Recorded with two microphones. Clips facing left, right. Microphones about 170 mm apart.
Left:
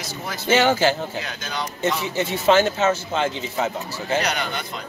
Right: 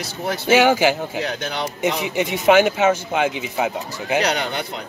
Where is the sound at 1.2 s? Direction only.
65° right (ahead or behind).